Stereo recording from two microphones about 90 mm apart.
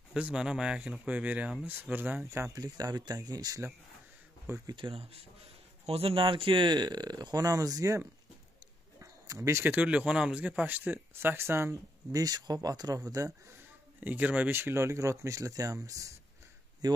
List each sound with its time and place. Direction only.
0.1 s speech: 10° right (ahead or behind)
2.2 s speech: 30° right (ahead or behind)
2.5 s speech: 45° right (ahead or behind)
4.7 s speech: 80° right; by 8.0 s 40° right (ahead or behind)
9.0 s a sound: 35° right (ahead or behind)
9.6 s speech: 15° right (ahead or behind)
12.1 s speech: 45° right (ahead or behind)
14.0 s speech: 20° right (ahead or behind); by 17.0 s 45° right (ahead or behind)